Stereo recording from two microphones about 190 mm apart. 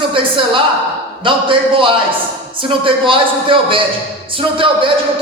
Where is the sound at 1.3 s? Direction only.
25° right (ahead or behind).